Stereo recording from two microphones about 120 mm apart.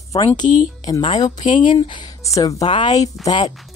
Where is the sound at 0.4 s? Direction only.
90° left.